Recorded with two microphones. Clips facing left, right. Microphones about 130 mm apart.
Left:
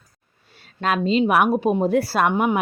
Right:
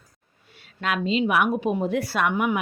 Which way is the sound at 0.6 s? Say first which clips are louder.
Left 4 dB; 40° left (ahead or behind).